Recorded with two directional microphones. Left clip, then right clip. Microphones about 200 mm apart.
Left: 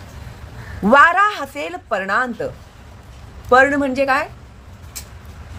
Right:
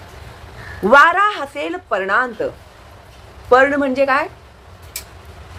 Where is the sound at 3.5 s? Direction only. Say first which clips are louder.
Right 1 dB; 15° left (ahead or behind).